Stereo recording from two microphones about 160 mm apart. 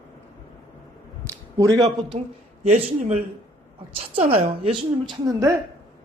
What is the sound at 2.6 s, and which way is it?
A man's voice, 40° right (ahead or behind).